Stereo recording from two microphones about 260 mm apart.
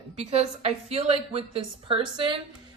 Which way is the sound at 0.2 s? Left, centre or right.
Right.